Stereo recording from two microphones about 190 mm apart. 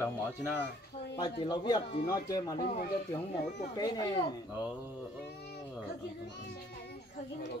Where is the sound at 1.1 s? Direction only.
20° left (ahead or behind).